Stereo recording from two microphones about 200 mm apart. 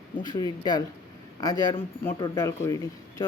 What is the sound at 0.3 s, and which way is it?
Speech, 20° left (ahead or behind).